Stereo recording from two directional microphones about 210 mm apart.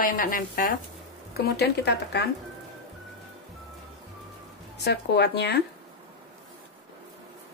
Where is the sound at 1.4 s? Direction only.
50° left (ahead or behind).